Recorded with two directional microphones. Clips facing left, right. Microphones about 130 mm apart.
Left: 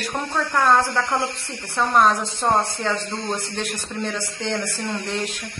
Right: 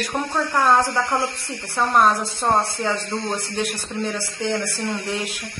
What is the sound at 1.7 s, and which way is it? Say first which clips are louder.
Speech: even; centre (ahead or behind).